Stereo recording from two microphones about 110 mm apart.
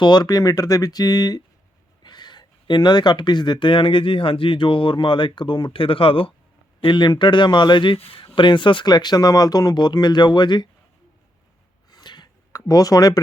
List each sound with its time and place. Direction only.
0.0 s speech: 40° left (ahead or behind)
6.8 s speech: 45° left (ahead or behind)
7.9 s speech: 60° left (ahead or behind)
8.4 s speech: 45° left (ahead or behind)
11.9 s a sound: 40° left (ahead or behind)